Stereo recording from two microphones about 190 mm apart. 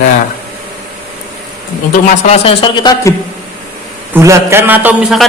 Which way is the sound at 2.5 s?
25° left (ahead or behind).